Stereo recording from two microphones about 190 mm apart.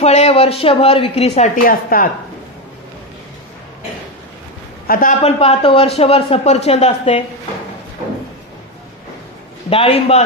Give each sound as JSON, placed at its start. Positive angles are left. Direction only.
{"t": 0.0, "sound": "speech", "side_deg": 35}
{"t": 4.8, "sound": "a man's voice", "side_deg": 45}
{"t": 5.2, "sound": "speech", "side_deg": 30}
{"t": 9.7, "sound": "a man's voice", "side_deg": 30}